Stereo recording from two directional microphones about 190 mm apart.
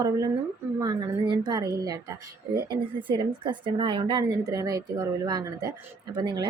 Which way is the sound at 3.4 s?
25° right (ahead or behind).